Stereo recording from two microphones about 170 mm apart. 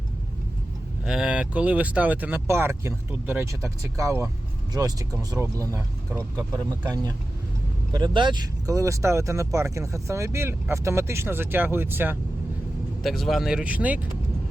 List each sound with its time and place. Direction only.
1.0 s speech: 5° right (ahead or behind)
13.0 s speech: centre (ahead or behind)